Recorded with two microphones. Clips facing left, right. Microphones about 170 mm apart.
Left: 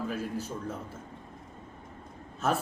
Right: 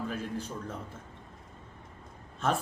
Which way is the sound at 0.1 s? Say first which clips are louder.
Left 2 dB; 5° left (ahead or behind).